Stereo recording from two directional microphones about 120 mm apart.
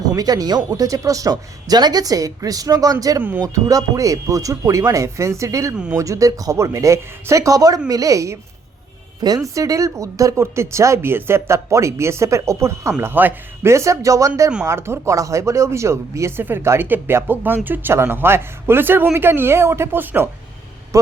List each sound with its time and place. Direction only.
0.1 s speech: 30° right (ahead or behind)
5.7 s speech: 10° right (ahead or behind)
6.0 s a man's voice: 25° right (ahead or behind)